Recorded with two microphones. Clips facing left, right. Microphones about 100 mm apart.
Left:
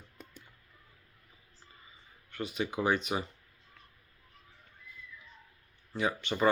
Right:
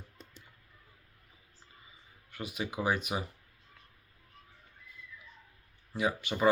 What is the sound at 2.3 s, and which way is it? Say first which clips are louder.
Speech: left 3 dB; 5° right (ahead or behind).